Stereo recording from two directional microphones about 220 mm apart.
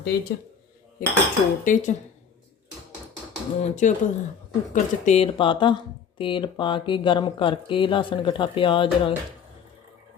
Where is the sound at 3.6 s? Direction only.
35° left (ahead or behind).